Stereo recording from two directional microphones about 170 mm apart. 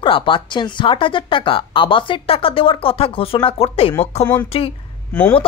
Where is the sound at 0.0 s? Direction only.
30° left (ahead or behind).